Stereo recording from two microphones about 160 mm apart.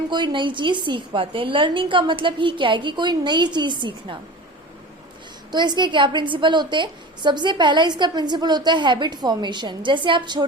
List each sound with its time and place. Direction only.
0.1 s a woman's voice: 30° right (ahead or behind)
5.5 s a woman's voice: 25° right (ahead or behind)